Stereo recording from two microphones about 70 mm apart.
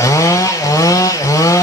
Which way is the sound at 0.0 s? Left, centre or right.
Left.